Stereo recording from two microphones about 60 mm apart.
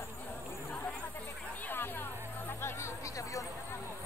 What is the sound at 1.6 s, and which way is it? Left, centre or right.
Music, left.